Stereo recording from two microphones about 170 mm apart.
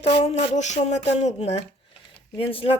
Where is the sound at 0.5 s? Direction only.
45° left (ahead or behind).